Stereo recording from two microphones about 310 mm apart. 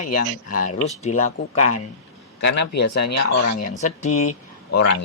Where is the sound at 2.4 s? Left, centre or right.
Left.